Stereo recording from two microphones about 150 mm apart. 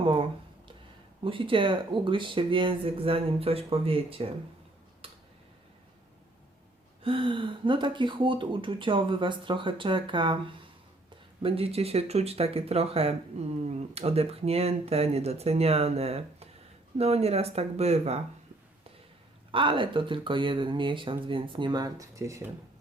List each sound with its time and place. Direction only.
0.0 s speech: 35° right (ahead or behind)
5.0 s tick-tock: 40° right (ahead or behind)
7.0 s speech: 35° right (ahead or behind)
11.4 s speech: 40° right (ahead or behind)
19.5 s speech: 35° right (ahead or behind)